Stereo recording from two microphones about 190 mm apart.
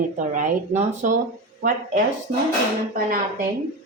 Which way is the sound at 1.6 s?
50° right (ahead or behind).